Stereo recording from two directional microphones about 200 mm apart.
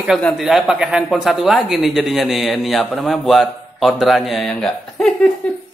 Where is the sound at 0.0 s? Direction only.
Centre (ahead or behind).